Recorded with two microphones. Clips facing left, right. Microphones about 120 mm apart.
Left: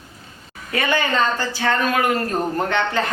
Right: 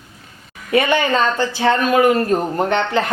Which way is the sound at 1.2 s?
20° right (ahead or behind).